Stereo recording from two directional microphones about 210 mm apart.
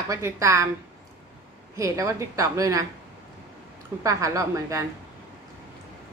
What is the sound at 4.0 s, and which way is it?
Speech, 15° right (ahead or behind).